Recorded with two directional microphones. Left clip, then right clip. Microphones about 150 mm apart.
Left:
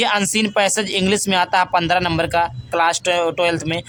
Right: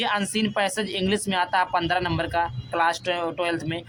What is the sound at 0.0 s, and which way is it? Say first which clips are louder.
Speech: left 7 dB; 40° left (ahead or behind).